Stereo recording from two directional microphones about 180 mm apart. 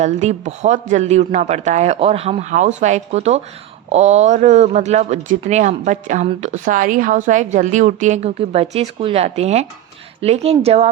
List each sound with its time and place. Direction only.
0.0 s speech: 40° right (ahead or behind)